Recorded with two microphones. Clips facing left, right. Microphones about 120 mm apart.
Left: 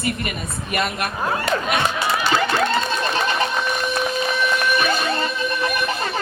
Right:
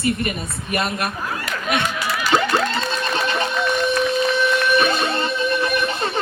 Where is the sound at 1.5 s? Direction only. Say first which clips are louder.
Even; 30° left (ahead or behind).